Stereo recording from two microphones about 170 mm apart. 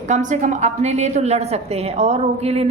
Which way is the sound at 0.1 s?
45° right (ahead or behind).